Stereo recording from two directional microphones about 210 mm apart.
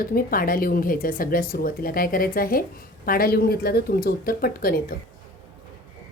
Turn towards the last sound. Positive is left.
turn(degrees=45)  # may be behind; listen again after turning